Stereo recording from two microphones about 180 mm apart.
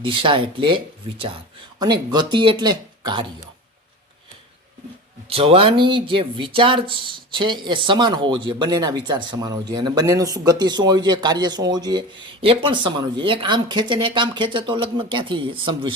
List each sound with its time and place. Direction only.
0.0 s speech: 30° right (ahead or behind)
1.8 s speech: 25° right (ahead or behind)
5.3 s speech: 30° right (ahead or behind)